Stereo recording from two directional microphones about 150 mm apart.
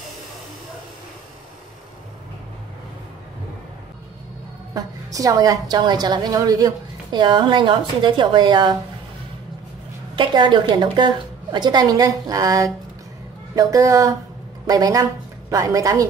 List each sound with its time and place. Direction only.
4.7 s a woman's voice: 25° right (ahead or behind)
10.1 s a woman's voice: 30° right (ahead or behind)